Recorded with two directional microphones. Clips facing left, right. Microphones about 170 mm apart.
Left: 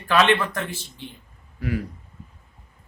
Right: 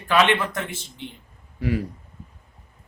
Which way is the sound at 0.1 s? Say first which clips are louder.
Even; 15° right (ahead or behind).